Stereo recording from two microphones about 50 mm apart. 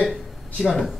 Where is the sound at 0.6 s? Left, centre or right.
Centre.